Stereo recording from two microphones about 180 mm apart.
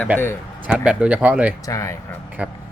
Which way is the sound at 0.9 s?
5° right (ahead or behind).